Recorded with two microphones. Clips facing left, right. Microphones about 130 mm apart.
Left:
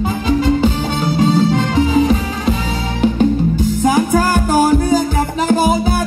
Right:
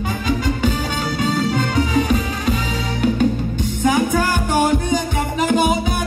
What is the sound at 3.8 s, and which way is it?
Music, 35° left (ahead or behind).